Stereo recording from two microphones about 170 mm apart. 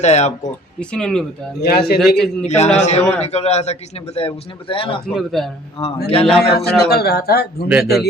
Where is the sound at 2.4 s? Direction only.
40° left (ahead or behind).